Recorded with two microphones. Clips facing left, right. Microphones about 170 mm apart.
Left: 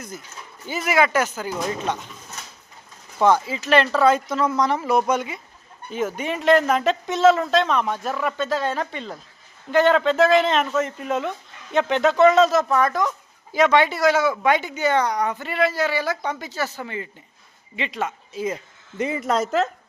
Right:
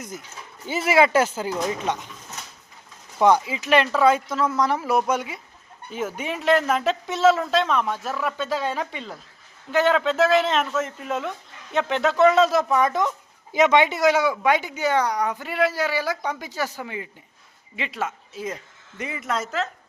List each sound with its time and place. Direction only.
0.7 s speech: 25° right (ahead or behind)
1.6 s speech: 15° right (ahead or behind)
3.2 s speech: 15° right (ahead or behind); by 18.6 s centre (ahead or behind)
18.9 s speech: 30° left (ahead or behind)